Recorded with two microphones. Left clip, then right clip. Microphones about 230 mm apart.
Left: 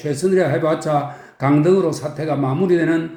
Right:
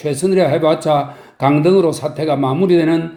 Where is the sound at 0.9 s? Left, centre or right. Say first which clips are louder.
Right 4 dB; right.